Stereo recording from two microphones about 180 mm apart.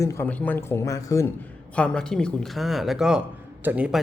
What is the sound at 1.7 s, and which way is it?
Speech, 5° left (ahead or behind).